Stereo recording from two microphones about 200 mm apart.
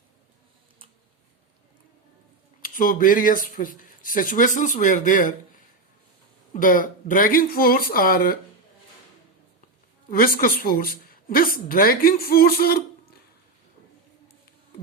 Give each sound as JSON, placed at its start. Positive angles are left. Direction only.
{"t": 2.6, "sound": "speech", "side_deg": 45}
{"t": 6.5, "sound": "speech", "side_deg": 45}
{"t": 10.1, "sound": "speech", "side_deg": 45}